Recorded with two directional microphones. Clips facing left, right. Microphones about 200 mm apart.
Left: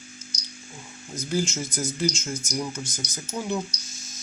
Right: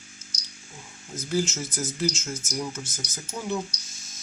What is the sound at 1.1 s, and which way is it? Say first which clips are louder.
Speech: even; 5° right (ahead or behind).